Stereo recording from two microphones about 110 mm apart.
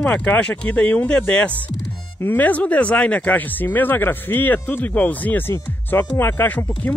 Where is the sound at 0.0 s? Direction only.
15° left (ahead or behind).